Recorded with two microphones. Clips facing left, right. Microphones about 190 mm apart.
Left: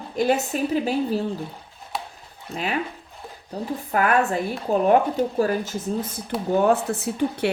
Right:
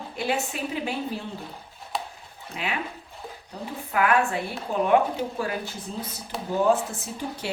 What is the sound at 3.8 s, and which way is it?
A woman's voice, 40° left (ahead or behind).